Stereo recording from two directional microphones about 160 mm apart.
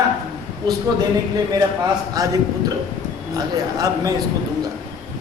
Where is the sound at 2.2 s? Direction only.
20° right (ahead or behind).